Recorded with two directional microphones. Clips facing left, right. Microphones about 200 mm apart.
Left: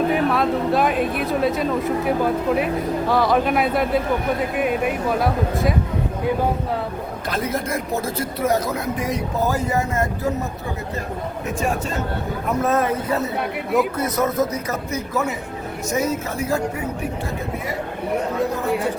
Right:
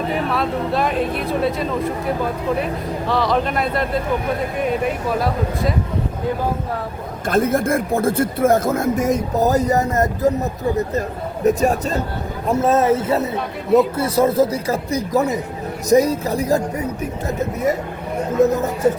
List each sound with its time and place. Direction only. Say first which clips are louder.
0.1 s speech: left 2 dB; centre (ahead or behind)
5.2 s speech: even; centre (ahead or behind)
7.3 s speech: right 8 dB; 50° right (ahead or behind)
11.4 s speech: right 8 dB; 40° right (ahead or behind)
12.5 s speech: right 5 dB; 25° right (ahead or behind); by 18.7 s 40° right (ahead or behind)